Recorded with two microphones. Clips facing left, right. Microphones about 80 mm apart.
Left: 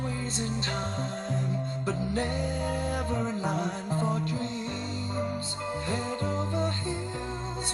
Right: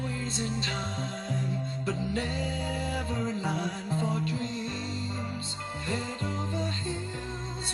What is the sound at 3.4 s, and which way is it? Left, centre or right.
Music, centre.